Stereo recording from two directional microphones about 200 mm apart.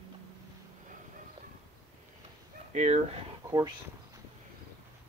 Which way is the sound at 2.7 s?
35° right (ahead or behind).